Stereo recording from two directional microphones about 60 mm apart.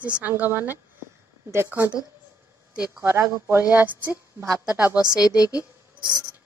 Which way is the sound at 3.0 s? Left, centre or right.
Right.